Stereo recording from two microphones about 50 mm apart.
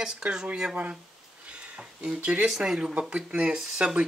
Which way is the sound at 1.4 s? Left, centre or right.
Right.